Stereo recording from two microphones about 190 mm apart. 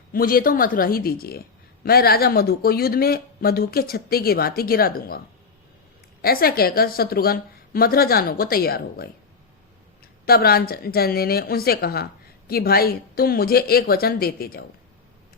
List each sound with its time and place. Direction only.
0.1 s speech: 50° left (ahead or behind)
6.2 s speech: 50° left (ahead or behind)
10.2 s speech: 55° left (ahead or behind)